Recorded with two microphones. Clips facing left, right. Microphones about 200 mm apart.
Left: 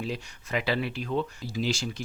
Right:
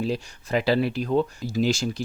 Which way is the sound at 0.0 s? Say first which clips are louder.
Right 7 dB; 35° right (ahead or behind).